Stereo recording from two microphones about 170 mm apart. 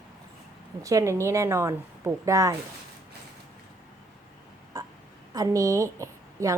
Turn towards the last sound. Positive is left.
turn(degrees=-15)  # may be behind; listen again after turning